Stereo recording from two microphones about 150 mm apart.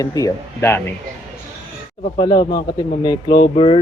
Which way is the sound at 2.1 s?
30° left (ahead or behind).